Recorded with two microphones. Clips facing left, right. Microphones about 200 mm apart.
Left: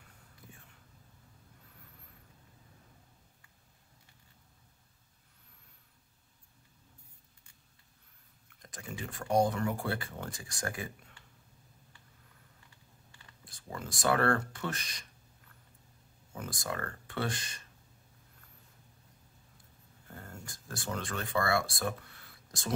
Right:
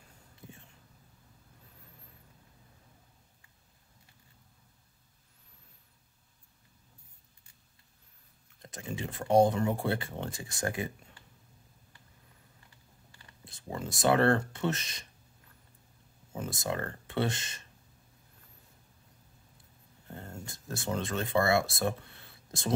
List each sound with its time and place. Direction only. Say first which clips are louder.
8.6 s speech: right 4 dB; 25° right (ahead or behind)
13.4 s speech: right 4 dB; 25° right (ahead or behind)
16.3 s speech: right 4 dB; 25° right (ahead or behind)
20.1 s speech: right 4 dB; 25° right (ahead or behind)